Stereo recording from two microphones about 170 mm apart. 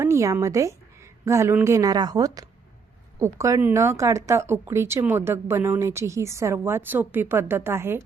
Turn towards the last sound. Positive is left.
turn(degrees=-15)  # may be behind; listen again after turning